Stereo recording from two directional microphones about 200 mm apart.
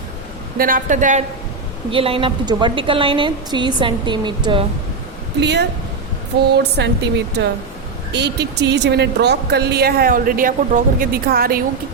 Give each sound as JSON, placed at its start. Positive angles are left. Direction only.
{"t": 0.6, "sound": "a woman's voice", "side_deg": -40}
{"t": 1.9, "sound": "a woman's voice", "side_deg": -25}
{"t": 5.4, "sound": "speech", "side_deg": -60}
{"t": 8.1, "sound": "speech", "side_deg": -60}